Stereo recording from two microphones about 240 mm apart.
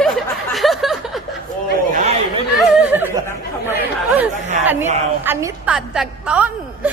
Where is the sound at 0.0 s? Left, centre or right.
Centre.